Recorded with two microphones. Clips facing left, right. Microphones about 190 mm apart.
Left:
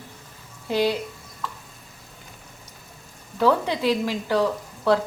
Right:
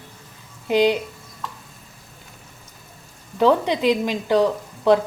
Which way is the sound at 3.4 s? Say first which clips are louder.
Right 3 dB; 20° right (ahead or behind).